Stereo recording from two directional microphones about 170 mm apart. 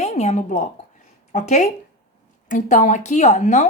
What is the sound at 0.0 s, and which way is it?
A woman's voice, 40° left (ahead or behind).